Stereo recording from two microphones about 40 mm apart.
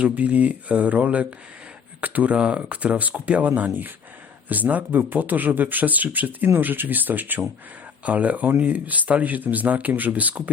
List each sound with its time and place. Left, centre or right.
0.0 s speech: right
2.3 s speech: right